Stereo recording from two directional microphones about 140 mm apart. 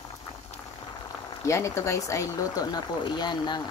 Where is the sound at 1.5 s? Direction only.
20° left (ahead or behind).